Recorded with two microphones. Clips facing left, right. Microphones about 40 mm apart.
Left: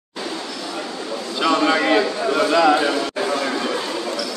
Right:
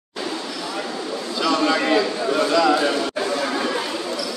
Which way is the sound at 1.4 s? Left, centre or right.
Left.